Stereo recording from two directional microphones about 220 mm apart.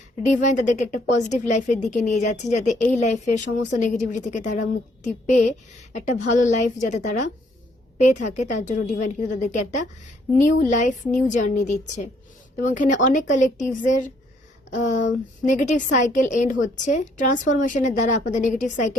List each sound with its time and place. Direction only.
0.3 s a woman's voice: 35° left (ahead or behind)